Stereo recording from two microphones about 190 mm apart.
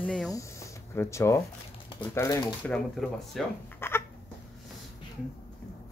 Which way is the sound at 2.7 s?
5° left (ahead or behind).